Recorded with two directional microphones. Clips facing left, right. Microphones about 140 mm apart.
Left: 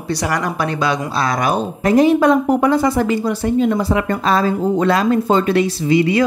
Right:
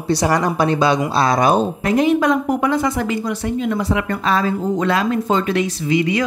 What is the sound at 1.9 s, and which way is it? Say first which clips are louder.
A woman's voice: left 5 dB; 35° left (ahead or behind).